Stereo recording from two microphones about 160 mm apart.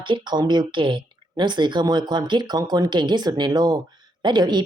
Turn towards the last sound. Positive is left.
turn(degrees=-25)  # may be behind; listen again after turning